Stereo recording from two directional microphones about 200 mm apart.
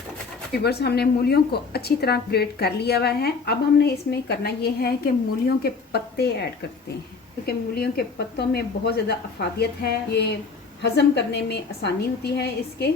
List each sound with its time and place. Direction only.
0.6 s a woman's voice: 55° left (ahead or behind)
7.4 s a woman's voice: 50° left (ahead or behind)